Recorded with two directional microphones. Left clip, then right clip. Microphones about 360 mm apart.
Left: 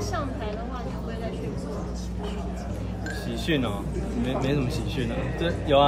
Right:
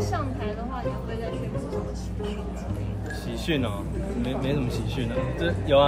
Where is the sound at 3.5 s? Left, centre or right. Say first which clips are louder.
Left 1 dB; centre.